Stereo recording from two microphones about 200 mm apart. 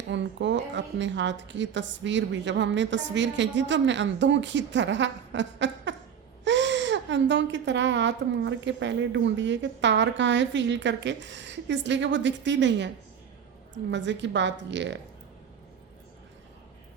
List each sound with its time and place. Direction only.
0.1 s speech: 65° right (ahead or behind)
13.9 s speech: 60° right (ahead or behind)